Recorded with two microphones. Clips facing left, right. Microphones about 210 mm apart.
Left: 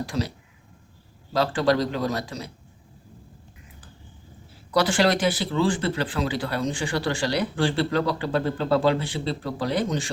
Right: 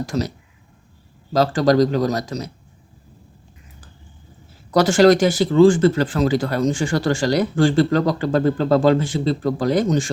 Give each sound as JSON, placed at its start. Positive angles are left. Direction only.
{"t": 0.0, "sound": "speech", "side_deg": -45}
{"t": 4.7, "sound": "speech", "side_deg": -45}